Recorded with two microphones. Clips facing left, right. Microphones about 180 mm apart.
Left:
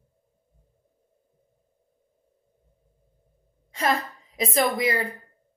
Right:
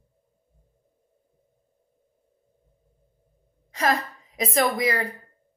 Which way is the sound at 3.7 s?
30° left (ahead or behind).